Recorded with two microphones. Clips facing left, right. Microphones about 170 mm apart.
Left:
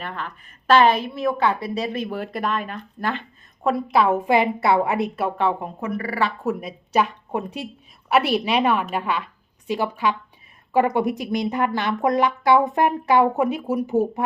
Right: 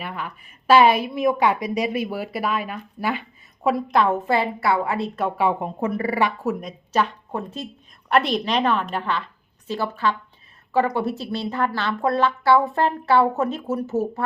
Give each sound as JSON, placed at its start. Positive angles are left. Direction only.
{"t": 0.0, "sound": "a woman's voice", "side_deg": -10}
{"t": 5.4, "sound": "a woman's voice", "side_deg": -15}
{"t": 5.8, "sound": "speech", "side_deg": -25}
{"t": 6.4, "sound": "speech", "side_deg": 0}